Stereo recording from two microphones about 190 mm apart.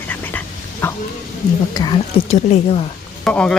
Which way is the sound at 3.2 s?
5° left (ahead or behind).